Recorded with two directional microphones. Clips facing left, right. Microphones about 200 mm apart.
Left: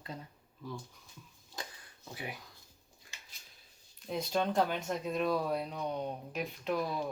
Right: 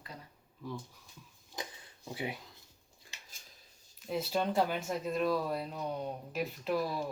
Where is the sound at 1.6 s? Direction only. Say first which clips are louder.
Right 2 dB; 15° right (ahead or behind).